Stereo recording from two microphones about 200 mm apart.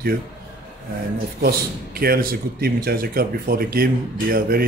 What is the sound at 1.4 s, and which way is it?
A man's voice, 50° right (ahead or behind).